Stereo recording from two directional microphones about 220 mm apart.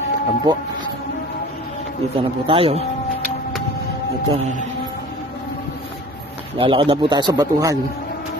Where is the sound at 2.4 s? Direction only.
25° right (ahead or behind).